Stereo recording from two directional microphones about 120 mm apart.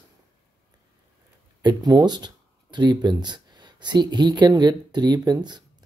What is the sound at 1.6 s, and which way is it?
Speech, 35° right (ahead or behind).